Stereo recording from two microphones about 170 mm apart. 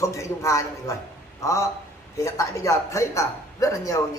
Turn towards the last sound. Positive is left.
turn(degrees=20)  # may be behind; listen again after turning